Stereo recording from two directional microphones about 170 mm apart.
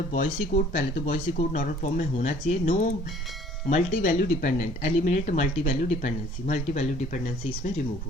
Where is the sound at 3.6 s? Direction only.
45° left (ahead or behind).